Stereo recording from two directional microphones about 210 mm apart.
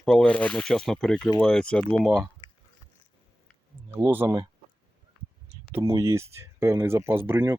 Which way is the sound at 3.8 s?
10° right (ahead or behind).